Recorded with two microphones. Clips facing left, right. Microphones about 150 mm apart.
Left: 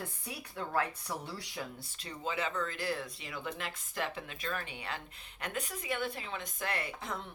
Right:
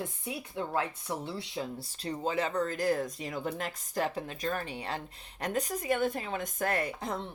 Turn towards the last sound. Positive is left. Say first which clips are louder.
# right 6 dB
turn(degrees=-40)  # may be behind; listen again after turning